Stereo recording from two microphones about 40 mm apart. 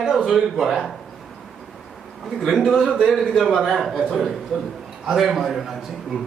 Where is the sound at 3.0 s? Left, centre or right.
Centre.